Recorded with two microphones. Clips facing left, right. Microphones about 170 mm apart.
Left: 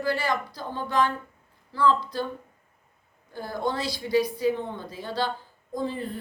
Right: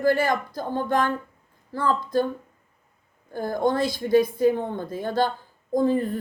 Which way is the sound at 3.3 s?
50° right (ahead or behind).